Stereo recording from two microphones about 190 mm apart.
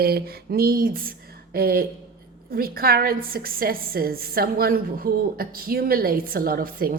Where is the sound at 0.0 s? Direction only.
55° right (ahead or behind).